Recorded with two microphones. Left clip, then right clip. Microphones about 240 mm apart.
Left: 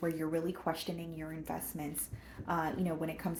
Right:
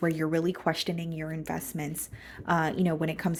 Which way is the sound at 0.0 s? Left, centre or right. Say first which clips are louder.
Right 7 dB; right.